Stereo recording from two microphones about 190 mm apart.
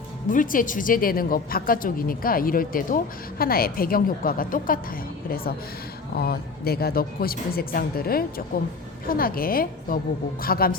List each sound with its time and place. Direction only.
0.3 s a woman's voice: 45° left (ahead or behind)